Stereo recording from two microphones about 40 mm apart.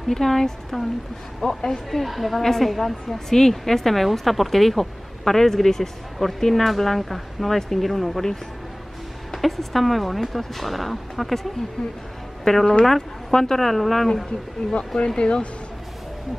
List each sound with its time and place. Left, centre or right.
0.1 s a woman's voice: centre
9.3 s a woman's voice: centre
12.4 s speech: centre
15.0 s speech: left